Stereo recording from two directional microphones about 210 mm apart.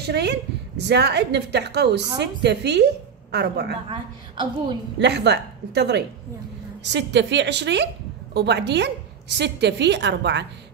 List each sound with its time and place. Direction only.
0.0 s a woman's voice: 50° right (ahead or behind)
3.9 s a woman's voice: 25° right (ahead or behind)
4.9 s a woman's voice: 55° right (ahead or behind)